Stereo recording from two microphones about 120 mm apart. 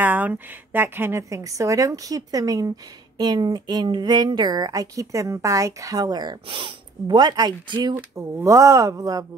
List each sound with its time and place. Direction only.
0.0 s a woman's voice: 15° right (ahead or behind); by 7.9 s 35° right (ahead or behind)
7.9 s a woman's voice: 20° right (ahead or behind)